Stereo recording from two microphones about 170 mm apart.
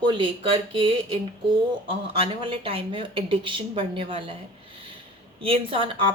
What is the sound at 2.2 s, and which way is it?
A woman's voice, 30° right (ahead or behind).